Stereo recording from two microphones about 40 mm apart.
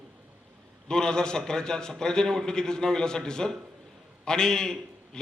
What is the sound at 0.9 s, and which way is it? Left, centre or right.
A man's voice, centre.